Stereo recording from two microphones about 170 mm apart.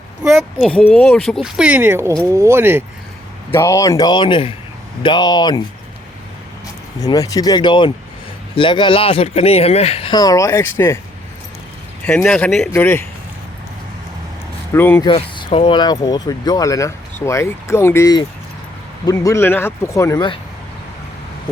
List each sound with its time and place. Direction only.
0.6 s speech: 5° left (ahead or behind)
1.4 s speech: 5° right (ahead or behind)
3.5 s speech: 15° left (ahead or behind)
7.0 s speech: 20° left (ahead or behind)
10.2 s speech: 20° left (ahead or behind)
12.0 s speech: 5° left (ahead or behind)
12.7 s speech: 15° left (ahead or behind)
14.7 s speech: 15° left (ahead or behind)
15.0 s speech: 30° left (ahead or behind)